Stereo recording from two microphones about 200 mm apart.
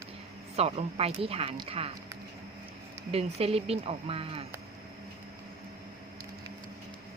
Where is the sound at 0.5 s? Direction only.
30° right (ahead or behind).